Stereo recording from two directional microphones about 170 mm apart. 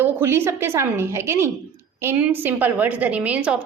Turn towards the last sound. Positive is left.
turn(degrees=-5)  # may be behind; listen again after turning